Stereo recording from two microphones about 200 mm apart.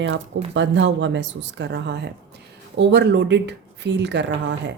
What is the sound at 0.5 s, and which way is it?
Speech, 65° right (ahead or behind).